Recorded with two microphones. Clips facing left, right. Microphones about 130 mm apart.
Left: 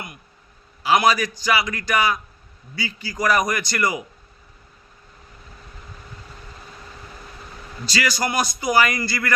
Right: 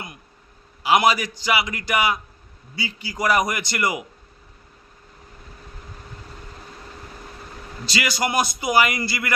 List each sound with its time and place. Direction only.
0.8 s a man's voice: 20° right (ahead or behind)
7.9 s a man's voice: 20° right (ahead or behind)